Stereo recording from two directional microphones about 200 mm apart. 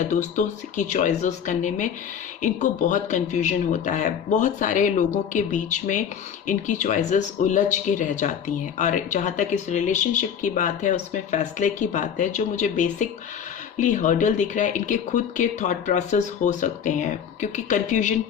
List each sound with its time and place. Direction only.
0.0 s speech: 35° left (ahead or behind)